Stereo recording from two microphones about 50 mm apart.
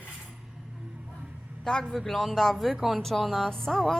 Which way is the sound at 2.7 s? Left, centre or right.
Centre.